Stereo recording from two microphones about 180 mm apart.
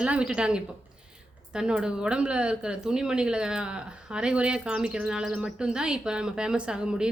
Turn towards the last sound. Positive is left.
turn(degrees=-5)  # may be behind; listen again after turning